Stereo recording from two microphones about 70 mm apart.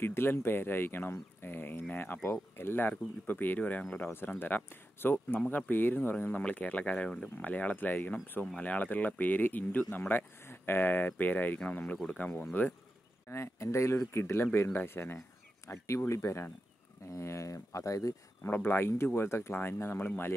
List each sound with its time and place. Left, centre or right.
0.0 s speech: left
13.3 s speech: left
18.5 s speech: left